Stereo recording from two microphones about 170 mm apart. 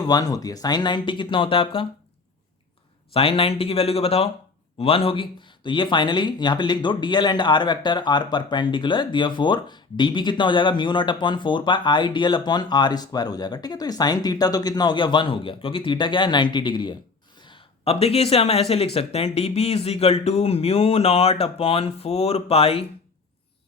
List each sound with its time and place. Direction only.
0.0 s speech: 20° left (ahead or behind)
3.1 s speech: 35° left (ahead or behind)